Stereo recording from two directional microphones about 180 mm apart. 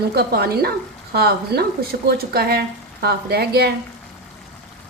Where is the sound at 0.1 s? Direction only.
60° right (ahead or behind).